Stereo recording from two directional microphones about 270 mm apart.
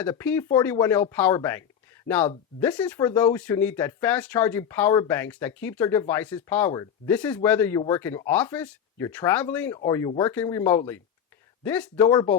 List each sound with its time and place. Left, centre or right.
0.0 s speech: centre